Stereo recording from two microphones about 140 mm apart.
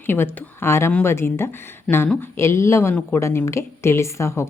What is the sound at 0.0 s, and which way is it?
Speech, 15° left (ahead or behind).